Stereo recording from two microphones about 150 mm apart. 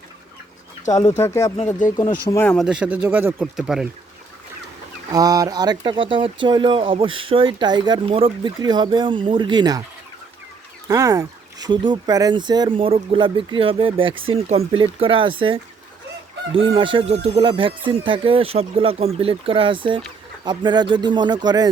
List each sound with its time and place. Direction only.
1.1 s speech: 20° left (ahead or behind)
1.5 s speech: 50° left (ahead or behind)
2.3 s speech: 15° left (ahead or behind)
2.6 s speech: 5° right (ahead or behind)
5.1 s speech: 25° right (ahead or behind)
10.8 s speech: 25° right (ahead or behind)